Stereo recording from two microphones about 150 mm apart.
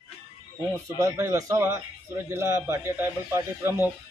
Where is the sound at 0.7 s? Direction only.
20° right (ahead or behind).